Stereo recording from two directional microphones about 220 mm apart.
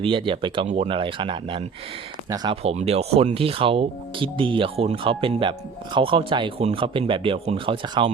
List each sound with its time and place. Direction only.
0.0 s speech: 25° right (ahead or behind)